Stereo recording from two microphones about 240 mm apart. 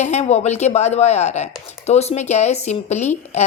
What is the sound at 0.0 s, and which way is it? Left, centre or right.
Speech, left.